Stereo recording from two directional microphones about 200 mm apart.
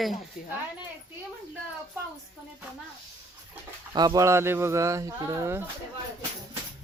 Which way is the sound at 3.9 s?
20° right (ahead or behind).